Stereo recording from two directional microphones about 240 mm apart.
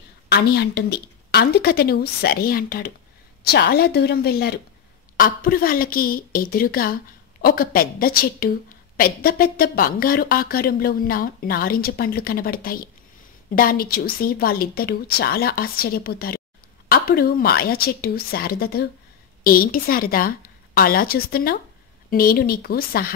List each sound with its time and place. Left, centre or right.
0.3 s a woman's voice: left